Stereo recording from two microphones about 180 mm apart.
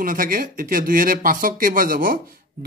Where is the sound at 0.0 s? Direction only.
50° right (ahead or behind).